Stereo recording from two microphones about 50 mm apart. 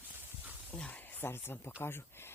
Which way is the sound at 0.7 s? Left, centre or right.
Left.